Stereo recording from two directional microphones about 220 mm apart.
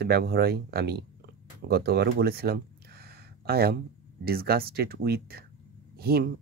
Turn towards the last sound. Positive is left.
turn(degrees=-45)  # may be behind; listen again after turning